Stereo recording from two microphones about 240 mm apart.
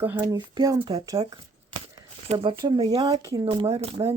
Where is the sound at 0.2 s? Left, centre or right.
Centre.